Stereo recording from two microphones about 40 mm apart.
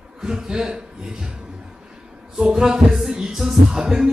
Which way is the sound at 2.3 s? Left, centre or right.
Centre.